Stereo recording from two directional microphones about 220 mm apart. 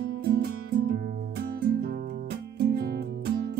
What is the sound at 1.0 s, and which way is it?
Music, 45° right (ahead or behind).